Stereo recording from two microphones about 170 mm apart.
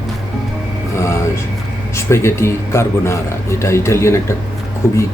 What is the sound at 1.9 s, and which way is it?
A man's voice, 15° left (ahead or behind).